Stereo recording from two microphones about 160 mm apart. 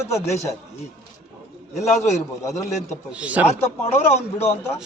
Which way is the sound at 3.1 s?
10° right (ahead or behind).